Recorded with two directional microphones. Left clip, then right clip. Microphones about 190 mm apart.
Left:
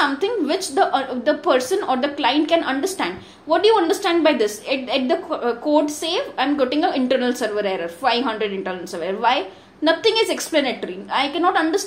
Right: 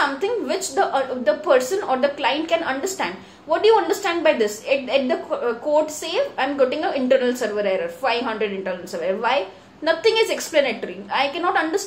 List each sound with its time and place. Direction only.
0.0 s a woman's voice: 40° left (ahead or behind)